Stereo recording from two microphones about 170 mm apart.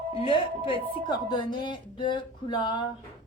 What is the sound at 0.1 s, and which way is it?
A woman's voice, 30° left (ahead or behind).